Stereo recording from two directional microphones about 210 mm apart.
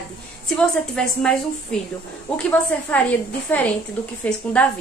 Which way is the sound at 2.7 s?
5° left (ahead or behind).